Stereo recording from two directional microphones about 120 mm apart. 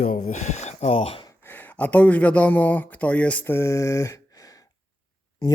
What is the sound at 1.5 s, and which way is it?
Speech, 15° left (ahead or behind).